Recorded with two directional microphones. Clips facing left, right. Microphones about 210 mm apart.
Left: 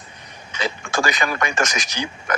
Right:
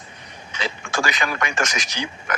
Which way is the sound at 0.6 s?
45° left (ahead or behind).